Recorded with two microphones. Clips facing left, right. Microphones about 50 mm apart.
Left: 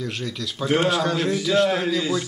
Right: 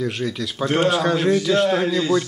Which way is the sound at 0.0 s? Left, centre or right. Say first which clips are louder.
Right 5 dB; centre.